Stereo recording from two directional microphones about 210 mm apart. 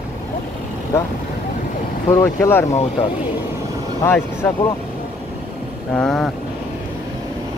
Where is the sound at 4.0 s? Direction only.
10° left (ahead or behind).